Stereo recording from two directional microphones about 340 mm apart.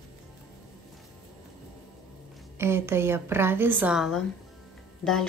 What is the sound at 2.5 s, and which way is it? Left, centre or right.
A woman's voice, centre.